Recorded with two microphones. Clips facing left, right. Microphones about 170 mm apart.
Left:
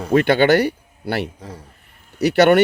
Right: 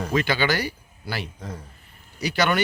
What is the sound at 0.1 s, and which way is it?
Speech, 60° left (ahead or behind).